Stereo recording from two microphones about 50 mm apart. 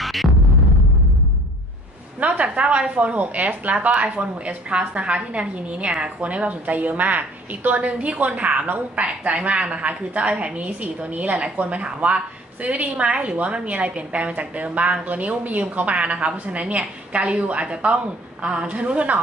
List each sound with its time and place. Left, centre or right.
0.0 s music: centre
2.1 s a woman's voice: right